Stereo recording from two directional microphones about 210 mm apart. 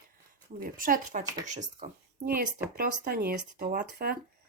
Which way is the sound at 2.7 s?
45° right (ahead or behind).